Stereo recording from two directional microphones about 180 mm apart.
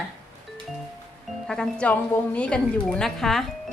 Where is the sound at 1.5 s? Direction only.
5° left (ahead or behind).